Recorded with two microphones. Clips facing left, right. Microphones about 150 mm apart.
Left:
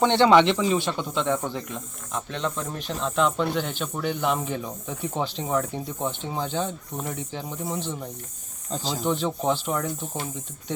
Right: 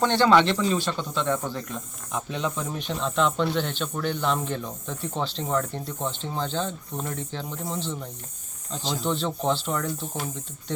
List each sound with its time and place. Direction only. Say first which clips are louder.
0.0 s speech: left 2 dB; 20° left (ahead or behind)
2.1 s speech: even; 5° right (ahead or behind)
9.0 s speech: left 1 dB; 10° left (ahead or behind)